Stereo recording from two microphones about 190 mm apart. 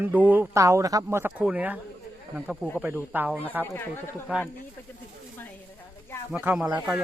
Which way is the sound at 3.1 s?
10° right (ahead or behind).